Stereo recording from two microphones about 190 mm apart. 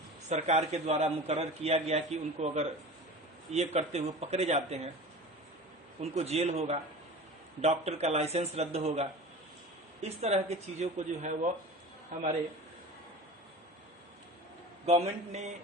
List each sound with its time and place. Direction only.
0.3 s a man's voice: 35° right (ahead or behind)
6.0 s a man's voice: 35° right (ahead or behind)
14.8 s a man's voice: 35° right (ahead or behind)